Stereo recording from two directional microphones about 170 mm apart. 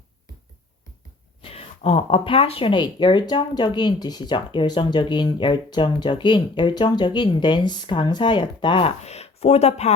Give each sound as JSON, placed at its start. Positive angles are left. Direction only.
{"t": 1.4, "sound": "speech", "side_deg": 35}